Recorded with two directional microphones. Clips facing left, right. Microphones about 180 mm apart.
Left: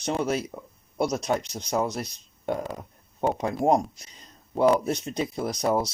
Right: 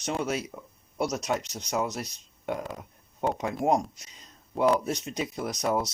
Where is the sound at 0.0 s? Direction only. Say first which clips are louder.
Left 3 dB; 35° left (ahead or behind).